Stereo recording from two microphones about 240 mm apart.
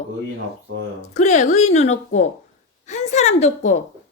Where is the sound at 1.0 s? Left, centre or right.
Left.